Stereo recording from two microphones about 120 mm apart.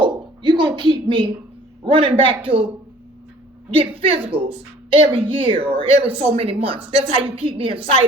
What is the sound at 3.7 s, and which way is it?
A woman's voice, 50° right (ahead or behind).